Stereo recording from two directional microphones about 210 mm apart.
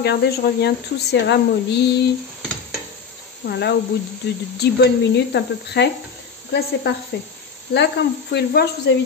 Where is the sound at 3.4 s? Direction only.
50° left (ahead or behind).